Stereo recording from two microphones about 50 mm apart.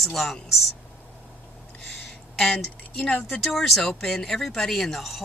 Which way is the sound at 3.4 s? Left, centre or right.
Centre.